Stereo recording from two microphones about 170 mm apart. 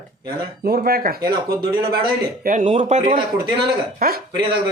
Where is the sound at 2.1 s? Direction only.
55° right (ahead or behind).